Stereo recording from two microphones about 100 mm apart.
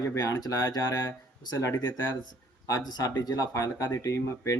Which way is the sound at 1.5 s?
30° left (ahead or behind).